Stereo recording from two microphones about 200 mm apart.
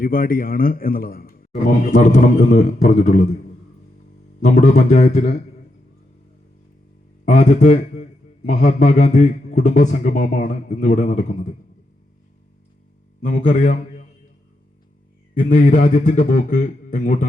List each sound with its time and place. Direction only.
0.0 s a man's voice: 45° left (ahead or behind)
4.4 s a man's voice: 35° left (ahead or behind)
7.3 s a man's voice: 35° left (ahead or behind)
13.2 s a man's voice: 40° left (ahead or behind)
15.4 s a man's voice: 40° left (ahead or behind)